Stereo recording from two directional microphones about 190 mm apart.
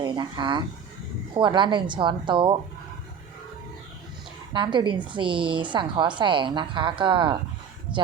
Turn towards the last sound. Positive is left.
turn(degrees=-25)  # may be behind; listen again after turning